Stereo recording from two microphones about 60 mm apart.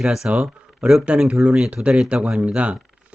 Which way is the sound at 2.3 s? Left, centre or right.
Centre.